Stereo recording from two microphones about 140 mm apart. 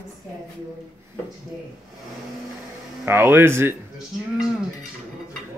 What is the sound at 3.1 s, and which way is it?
Speech, 15° right (ahead or behind).